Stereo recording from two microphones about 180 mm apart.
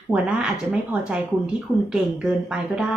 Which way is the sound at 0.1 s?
5° right (ahead or behind).